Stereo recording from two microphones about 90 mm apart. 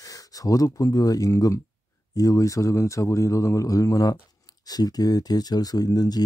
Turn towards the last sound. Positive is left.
turn(degrees=45)  # may be behind; listen again after turning